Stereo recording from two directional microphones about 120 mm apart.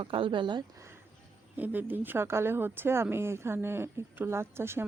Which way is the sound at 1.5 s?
15° right (ahead or behind).